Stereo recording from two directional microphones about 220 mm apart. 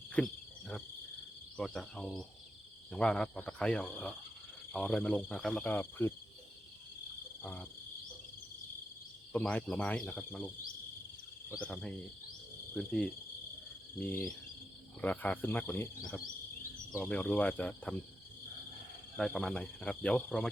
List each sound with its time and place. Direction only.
0.1 s cricket: 5° left (ahead or behind)
1.5 s speech: centre (ahead or behind)
7.4 s cricket: 10° left (ahead or behind)
9.3 s speech: 5° left (ahead or behind)
11.5 s speech: 5° left (ahead or behind)
19.1 s speech: centre (ahead or behind)